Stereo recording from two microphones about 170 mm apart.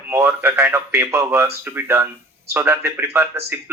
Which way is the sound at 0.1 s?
15° right (ahead or behind).